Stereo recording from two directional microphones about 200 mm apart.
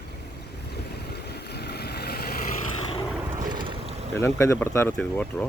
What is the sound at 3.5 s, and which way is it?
Boat, 25° right (ahead or behind).